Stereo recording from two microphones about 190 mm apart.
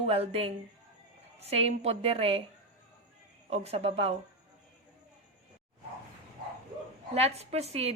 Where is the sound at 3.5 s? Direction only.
35° right (ahead or behind).